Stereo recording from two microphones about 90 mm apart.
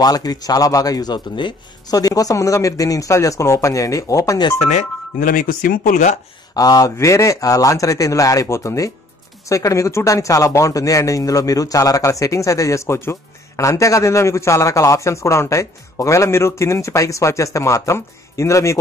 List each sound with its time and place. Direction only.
0.0 s speech: 45° left (ahead or behind)
2.0 s speech: 40° left (ahead or behind)
6.5 s speech: 45° left (ahead or behind)